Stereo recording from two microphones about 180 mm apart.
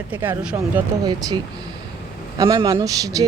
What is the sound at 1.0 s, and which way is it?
Speech, 20° right (ahead or behind).